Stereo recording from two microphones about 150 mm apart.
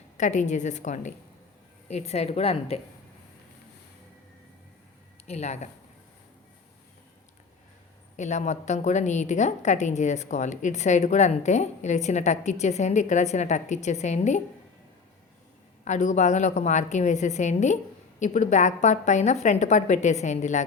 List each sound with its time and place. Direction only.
0.2 s a woman's voice: 55° left (ahead or behind)
5.3 s a woman's voice: 45° left (ahead or behind)
8.1 s a woman's voice: 50° left (ahead or behind)
15.8 s a woman's voice: 50° left (ahead or behind)